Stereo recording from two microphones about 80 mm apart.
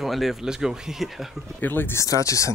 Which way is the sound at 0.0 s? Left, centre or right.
Centre.